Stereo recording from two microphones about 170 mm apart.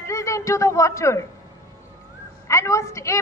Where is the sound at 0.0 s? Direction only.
15° left (ahead or behind).